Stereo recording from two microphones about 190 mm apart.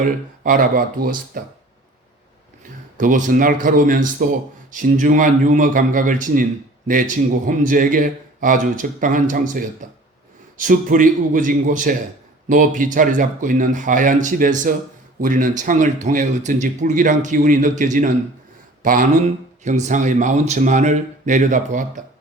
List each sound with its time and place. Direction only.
0.0 s a man's voice: 45° right (ahead or behind)
3.0 s a man's voice: 45° right (ahead or behind)